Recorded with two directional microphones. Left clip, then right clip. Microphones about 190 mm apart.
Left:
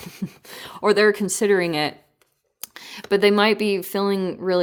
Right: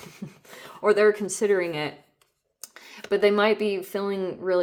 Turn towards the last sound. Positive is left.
turn(degrees=45)  # may be behind; listen again after turning